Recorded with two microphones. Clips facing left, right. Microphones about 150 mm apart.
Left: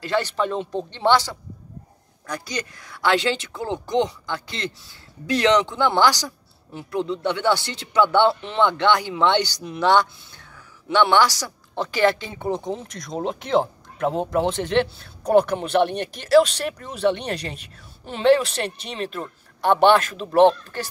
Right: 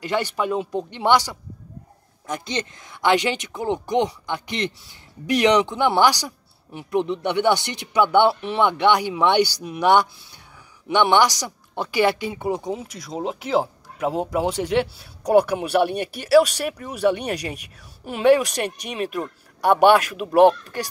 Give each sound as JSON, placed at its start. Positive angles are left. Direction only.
{"t": 0.0, "sound": "a woman's voice", "side_deg": -15}